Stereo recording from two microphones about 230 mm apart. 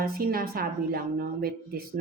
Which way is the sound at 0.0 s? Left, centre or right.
Right.